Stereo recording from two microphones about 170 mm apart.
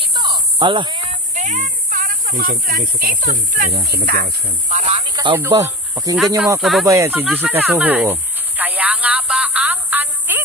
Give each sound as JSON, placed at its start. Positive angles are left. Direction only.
{"t": 0.0, "sound": "a sound", "side_deg": -25}
{"t": 1.3, "sound": "speech", "side_deg": -45}
{"t": 3.9, "sound": "speech", "side_deg": -65}
{"t": 4.7, "sound": "a sound", "side_deg": -40}
{"t": 5.0, "sound": "snake", "side_deg": -30}
{"t": 5.3, "sound": "speech", "side_deg": -15}
{"t": 6.6, "sound": "speech", "side_deg": 0}
{"t": 6.8, "sound": "snake", "side_deg": -20}